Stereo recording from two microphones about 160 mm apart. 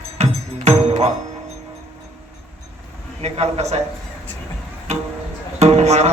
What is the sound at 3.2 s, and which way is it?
Speech, 40° right (ahead or behind).